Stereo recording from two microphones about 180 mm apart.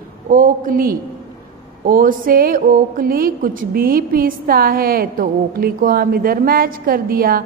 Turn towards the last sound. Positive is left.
turn(degrees=-55)  # may be behind; listen again after turning